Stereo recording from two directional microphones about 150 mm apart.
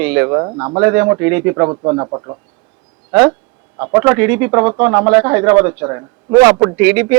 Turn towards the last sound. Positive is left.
turn(degrees=-10)  # may be behind; listen again after turning